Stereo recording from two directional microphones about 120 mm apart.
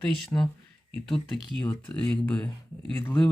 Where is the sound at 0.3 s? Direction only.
20° left (ahead or behind).